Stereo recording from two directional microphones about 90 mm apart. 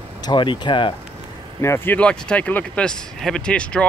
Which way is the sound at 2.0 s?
10° left (ahead or behind).